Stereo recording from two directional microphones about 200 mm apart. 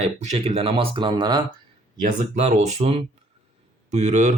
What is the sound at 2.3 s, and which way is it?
Speech, 35° right (ahead or behind).